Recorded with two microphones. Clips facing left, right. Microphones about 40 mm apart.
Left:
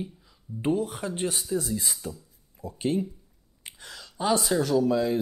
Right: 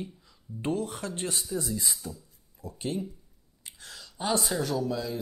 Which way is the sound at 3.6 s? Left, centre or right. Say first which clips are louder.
Left 3 dB; left.